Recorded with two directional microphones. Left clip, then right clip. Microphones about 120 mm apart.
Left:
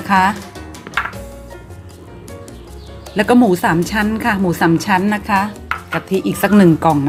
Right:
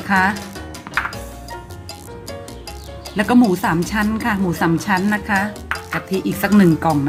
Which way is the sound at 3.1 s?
30° left (ahead or behind).